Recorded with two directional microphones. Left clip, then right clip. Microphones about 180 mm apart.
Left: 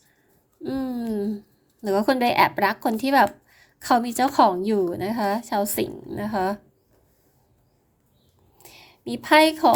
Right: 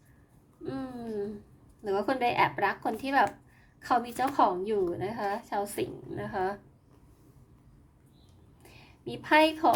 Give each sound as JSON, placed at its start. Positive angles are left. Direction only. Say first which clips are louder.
{"t": 0.6, "sound": "a sound", "louder": "left 9 dB", "side_deg": 40}
{"t": 1.8, "sound": "a woman's voice", "louder": "left 7 dB", "side_deg": 45}
{"t": 8.6, "sound": "a woman's voice", "louder": "left 6 dB", "side_deg": 35}